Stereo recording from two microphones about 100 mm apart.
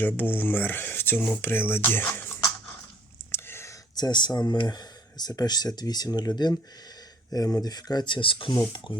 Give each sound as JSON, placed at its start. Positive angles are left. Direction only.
{"t": 0.0, "sound": "speech", "side_deg": 20}
{"t": 3.3, "sound": "whispering", "side_deg": 25}
{"t": 3.9, "sound": "speech", "side_deg": 45}